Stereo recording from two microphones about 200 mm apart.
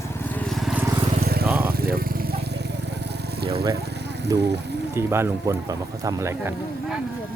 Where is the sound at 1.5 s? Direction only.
10° right (ahead or behind).